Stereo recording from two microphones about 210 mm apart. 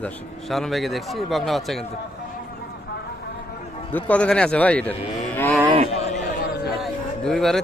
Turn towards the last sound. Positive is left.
turn(degrees=0)  # may be behind; listen again after turning